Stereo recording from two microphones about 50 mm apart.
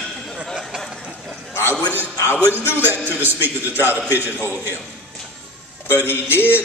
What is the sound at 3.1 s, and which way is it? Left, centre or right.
Speech, right.